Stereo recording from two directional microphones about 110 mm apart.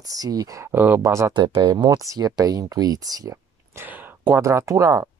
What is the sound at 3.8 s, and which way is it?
Speech, 20° right (ahead or behind).